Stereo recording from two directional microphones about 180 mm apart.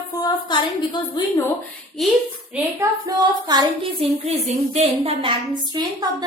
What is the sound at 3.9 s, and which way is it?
A woman's voice, 35° right (ahead or behind).